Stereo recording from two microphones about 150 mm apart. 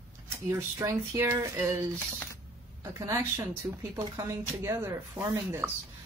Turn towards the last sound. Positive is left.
turn(degrees=-15)  # may be behind; listen again after turning